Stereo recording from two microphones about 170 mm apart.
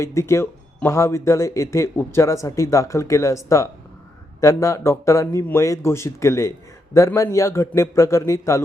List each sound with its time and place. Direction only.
0.0 s a man's voice: 15° left (ahead or behind)